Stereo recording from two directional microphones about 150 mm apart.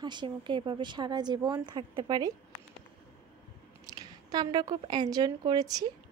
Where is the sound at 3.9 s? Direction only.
25° right (ahead or behind).